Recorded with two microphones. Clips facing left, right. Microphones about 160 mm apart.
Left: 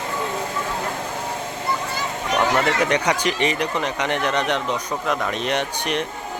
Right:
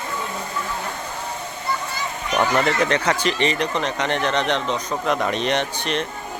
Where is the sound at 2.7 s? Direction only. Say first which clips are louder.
Even; 10° left (ahead or behind).